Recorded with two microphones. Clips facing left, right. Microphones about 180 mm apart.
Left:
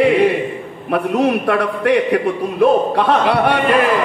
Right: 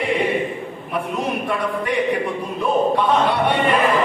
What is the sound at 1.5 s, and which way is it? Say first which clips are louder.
A man's voice: left 7 dB; 75° left (ahead or behind).